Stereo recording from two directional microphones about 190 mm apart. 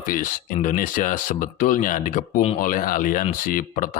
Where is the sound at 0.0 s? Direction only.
45° left (ahead or behind).